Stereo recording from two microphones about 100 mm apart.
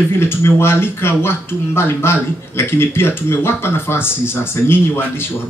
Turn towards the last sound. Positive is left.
turn(degrees=25)  # may be behind; listen again after turning